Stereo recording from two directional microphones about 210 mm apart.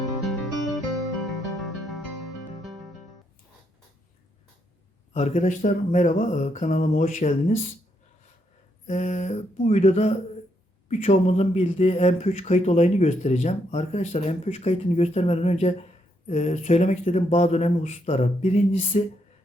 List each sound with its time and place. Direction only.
0.2 s guitar: centre (ahead or behind)
1.2 s music: centre (ahead or behind)
5.1 s speech: 35° left (ahead or behind)
8.9 s speech: 35° left (ahead or behind)